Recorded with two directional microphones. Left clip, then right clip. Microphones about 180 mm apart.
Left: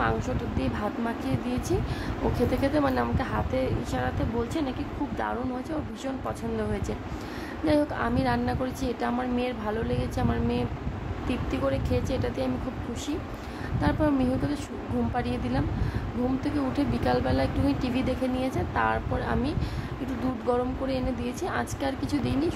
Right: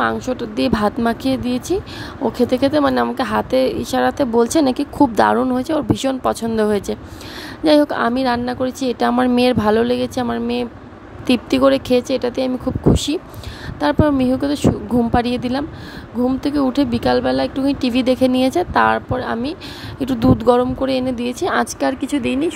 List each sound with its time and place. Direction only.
0.0 s speech: 45° right (ahead or behind)
11.2 s speech: 55° right (ahead or behind)
13.7 s speech: 45° right (ahead or behind)
22.1 s speech: 30° right (ahead or behind)